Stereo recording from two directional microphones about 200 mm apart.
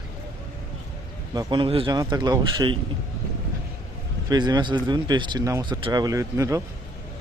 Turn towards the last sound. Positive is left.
turn(degrees=-15)  # may be behind; listen again after turning